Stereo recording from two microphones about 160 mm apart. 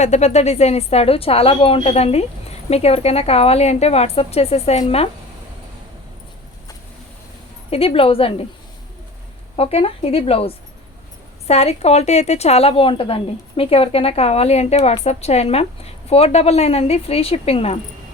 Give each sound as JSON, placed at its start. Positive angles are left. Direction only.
{"t": 0.0, "sound": "a woman's voice", "side_deg": 45}
{"t": 7.7, "sound": "a woman's voice", "side_deg": 40}
{"t": 9.6, "sound": "a woman's voice", "side_deg": 35}